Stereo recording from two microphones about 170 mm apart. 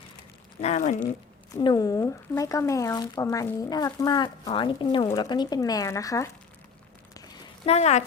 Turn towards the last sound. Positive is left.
turn(degrees=40)  # may be behind; listen again after turning